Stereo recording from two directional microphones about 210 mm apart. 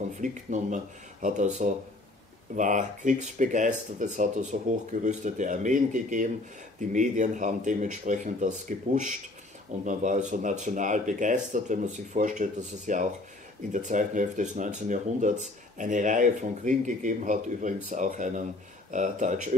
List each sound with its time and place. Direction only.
0.2 s speech: 35° right (ahead or behind)